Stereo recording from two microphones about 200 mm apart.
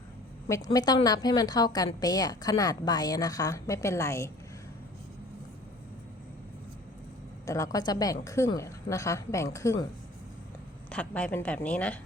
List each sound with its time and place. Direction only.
0.4 s a woman's voice: 15° left (ahead or behind)
7.4 s a woman's voice: 15° left (ahead or behind)
10.9 s a woman's voice: 5° left (ahead or behind)